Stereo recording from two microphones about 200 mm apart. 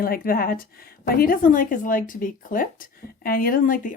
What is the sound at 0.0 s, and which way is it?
A woman's voice, 45° left (ahead or behind).